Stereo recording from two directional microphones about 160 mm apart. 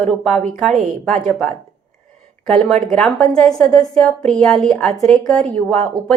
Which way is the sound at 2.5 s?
5° left (ahead or behind).